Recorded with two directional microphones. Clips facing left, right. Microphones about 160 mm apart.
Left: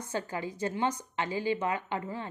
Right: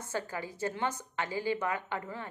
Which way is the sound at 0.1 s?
20° left (ahead or behind).